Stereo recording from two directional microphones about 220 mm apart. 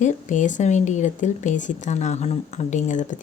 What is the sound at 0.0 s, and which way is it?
Speech, 35° left (ahead or behind).